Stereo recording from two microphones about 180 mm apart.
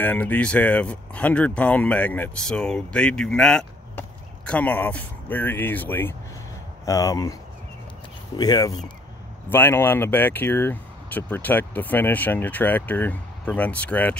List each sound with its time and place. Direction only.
0.0 s speech: 10° left (ahead or behind)
8.4 s speech: 25° left (ahead or behind)